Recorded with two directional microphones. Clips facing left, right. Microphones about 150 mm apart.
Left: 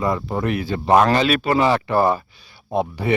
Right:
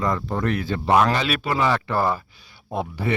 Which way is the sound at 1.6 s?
20° left (ahead or behind).